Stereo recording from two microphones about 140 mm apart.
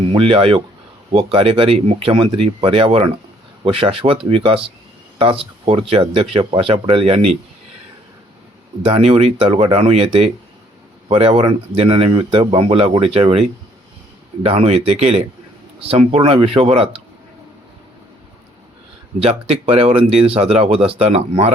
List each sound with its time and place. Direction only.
0.0 s speech: 40° right (ahead or behind)
5.6 s speech: 40° right (ahead or behind)
8.8 s speech: 40° right (ahead or behind)
14.4 s speech: 45° right (ahead or behind)
19.2 s speech: 45° right (ahead or behind)